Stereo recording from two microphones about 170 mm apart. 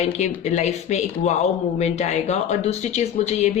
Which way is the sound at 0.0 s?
40° left (ahead or behind).